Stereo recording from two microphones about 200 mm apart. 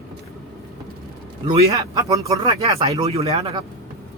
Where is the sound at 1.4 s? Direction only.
20° right (ahead or behind).